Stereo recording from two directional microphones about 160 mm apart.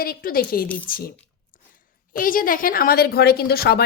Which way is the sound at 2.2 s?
60° left (ahead or behind).